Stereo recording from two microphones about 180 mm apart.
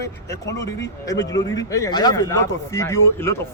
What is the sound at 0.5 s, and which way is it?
A man's voice, 20° left (ahead or behind).